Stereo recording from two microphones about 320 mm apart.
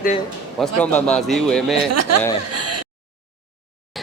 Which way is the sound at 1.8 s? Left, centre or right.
Right.